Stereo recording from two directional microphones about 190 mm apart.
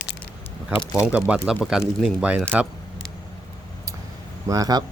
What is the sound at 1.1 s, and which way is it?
Speech, 5° right (ahead or behind).